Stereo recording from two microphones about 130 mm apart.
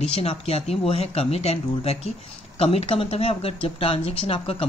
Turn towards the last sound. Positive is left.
turn(degrees=50)  # may be behind; listen again after turning